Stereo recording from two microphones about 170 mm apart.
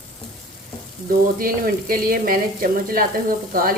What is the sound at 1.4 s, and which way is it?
Speech, 55° right (ahead or behind).